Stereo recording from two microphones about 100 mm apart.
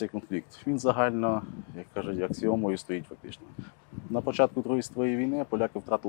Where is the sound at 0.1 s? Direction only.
25° left (ahead or behind).